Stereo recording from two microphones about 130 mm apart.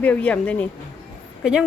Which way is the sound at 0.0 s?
10° left (ahead or behind).